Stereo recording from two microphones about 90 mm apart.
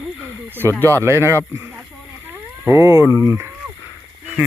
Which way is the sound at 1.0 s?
30° right (ahead or behind).